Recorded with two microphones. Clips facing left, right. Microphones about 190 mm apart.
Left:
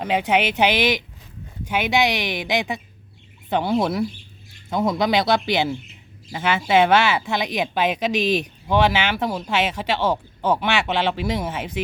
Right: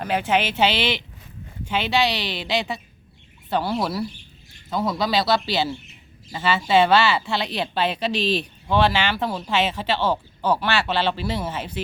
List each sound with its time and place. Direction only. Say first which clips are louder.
0.0 s speech: left 2 dB; 20° left (ahead or behind)
3.5 s speech: left 3 dB; 20° left (ahead or behind)